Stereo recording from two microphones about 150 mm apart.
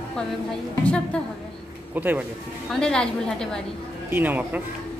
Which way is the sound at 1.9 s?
10° right (ahead or behind).